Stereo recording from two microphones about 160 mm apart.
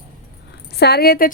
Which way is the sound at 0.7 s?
90° left.